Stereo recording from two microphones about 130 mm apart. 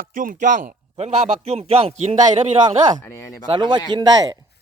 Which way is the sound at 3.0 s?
25° left (ahead or behind).